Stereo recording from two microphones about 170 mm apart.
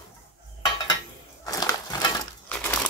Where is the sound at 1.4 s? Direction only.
20° left (ahead or behind).